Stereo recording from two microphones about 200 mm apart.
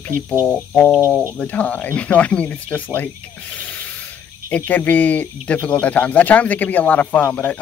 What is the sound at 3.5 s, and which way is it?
Spray, 10° left (ahead or behind).